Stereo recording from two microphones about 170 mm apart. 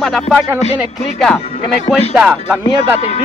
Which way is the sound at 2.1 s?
5° right (ahead or behind).